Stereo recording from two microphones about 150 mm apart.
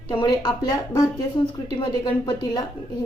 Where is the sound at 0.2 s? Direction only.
25° left (ahead or behind).